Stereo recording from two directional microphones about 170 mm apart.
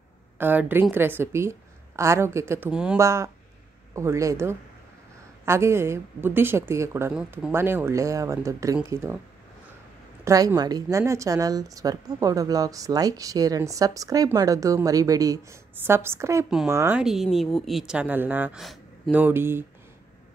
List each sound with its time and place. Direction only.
0.4 s a woman's voice: 10° right (ahead or behind)
2.7 s a woman's voice: 5° right (ahead or behind)
3.0 s a woman's voice: 15° right (ahead or behind)
10.2 s a woman's voice: 20° right (ahead or behind)
17.0 s a woman's voice: centre (ahead or behind)